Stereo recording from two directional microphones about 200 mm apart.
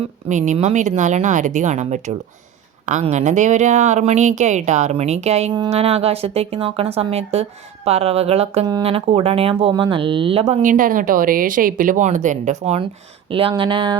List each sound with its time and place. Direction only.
0.3 s speech: 35° right (ahead or behind)